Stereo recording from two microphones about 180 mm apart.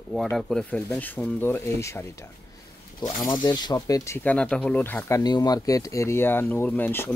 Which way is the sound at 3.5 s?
20° left (ahead or behind).